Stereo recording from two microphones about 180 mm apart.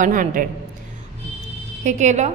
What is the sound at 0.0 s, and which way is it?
Speech, 50° right (ahead or behind).